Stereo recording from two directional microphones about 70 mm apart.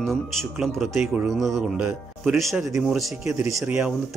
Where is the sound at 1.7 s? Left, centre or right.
Centre.